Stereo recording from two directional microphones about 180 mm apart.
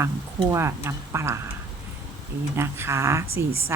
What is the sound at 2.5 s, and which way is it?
Speech, 15° right (ahead or behind).